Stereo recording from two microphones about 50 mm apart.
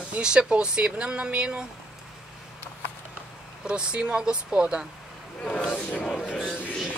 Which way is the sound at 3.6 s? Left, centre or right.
Centre.